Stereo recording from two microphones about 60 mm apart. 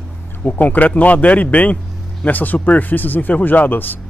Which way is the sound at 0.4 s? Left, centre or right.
Left.